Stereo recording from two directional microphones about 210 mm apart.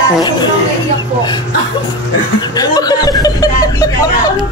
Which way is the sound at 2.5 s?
20° left (ahead or behind).